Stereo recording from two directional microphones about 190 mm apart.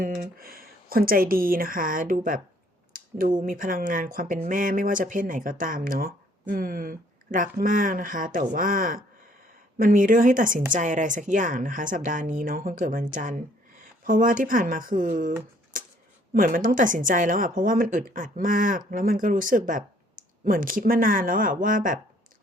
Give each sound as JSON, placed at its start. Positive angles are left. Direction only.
{"t": 0.0, "sound": "a woman's voice", "side_deg": -50}
{"t": 2.9, "sound": "a sound", "side_deg": -45}
{"t": 3.4, "sound": "a woman's voice", "side_deg": -45}
{"t": 16.3, "sound": "a woman's voice", "side_deg": -45}